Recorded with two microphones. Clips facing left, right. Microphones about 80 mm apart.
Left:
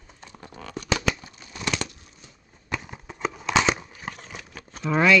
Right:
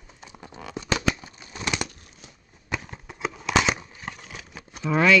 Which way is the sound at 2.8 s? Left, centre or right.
Centre.